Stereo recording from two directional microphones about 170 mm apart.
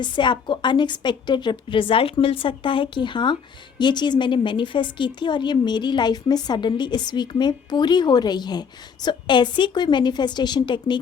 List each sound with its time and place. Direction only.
0.0 s a woman's voice: 25° left (ahead or behind)